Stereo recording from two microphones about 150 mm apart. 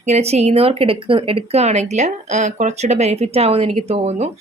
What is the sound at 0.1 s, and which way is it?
A woman's voice, 45° right (ahead or behind).